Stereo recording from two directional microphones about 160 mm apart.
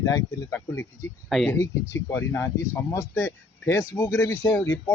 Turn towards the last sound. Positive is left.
turn(degrees=20)  # may be behind; listen again after turning